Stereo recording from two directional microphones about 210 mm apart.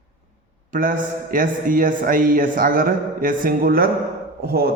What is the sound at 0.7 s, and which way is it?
A man's voice, 40° right (ahead or behind).